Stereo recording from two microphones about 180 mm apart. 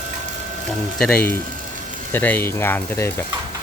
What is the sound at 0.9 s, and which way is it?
Speech, 5° left (ahead or behind).